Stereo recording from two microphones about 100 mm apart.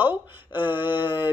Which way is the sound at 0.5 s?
55° left (ahead or behind).